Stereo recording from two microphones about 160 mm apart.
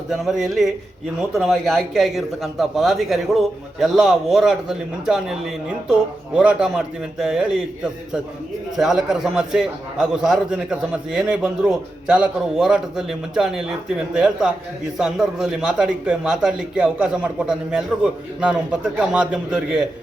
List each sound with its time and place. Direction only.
0.1 s a man's voice: centre (ahead or behind)
8.7 s a man's voice: centre (ahead or behind)